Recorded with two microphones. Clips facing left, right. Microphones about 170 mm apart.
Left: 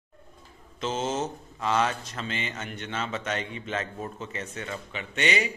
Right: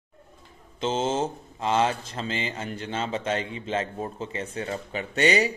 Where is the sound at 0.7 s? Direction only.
30° right (ahead or behind).